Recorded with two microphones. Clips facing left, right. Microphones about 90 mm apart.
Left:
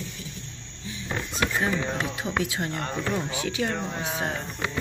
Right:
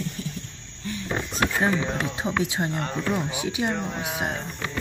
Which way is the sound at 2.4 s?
25° right (ahead or behind).